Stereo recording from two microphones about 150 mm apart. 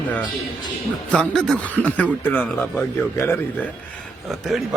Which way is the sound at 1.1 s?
5° left (ahead or behind).